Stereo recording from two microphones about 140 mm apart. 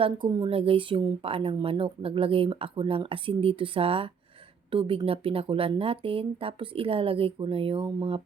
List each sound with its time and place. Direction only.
0.0 s speech: 30° right (ahead or behind)
0.5 s speech: 40° right (ahead or behind)